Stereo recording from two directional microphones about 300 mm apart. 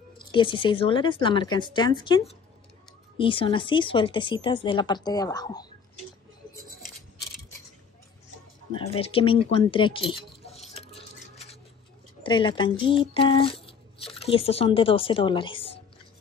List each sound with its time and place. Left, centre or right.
0.3 s speech: centre
8.7 s speech: centre
10.7 s stir: centre
12.2 s speech: centre